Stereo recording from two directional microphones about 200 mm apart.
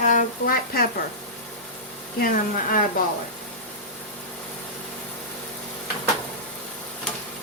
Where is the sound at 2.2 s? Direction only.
45° left (ahead or behind).